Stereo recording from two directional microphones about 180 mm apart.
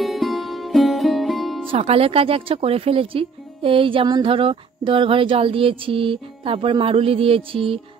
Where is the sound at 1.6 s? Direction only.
30° right (ahead or behind).